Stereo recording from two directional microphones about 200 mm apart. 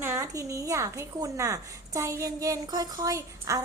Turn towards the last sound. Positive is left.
turn(degrees=-15)  # may be behind; listen again after turning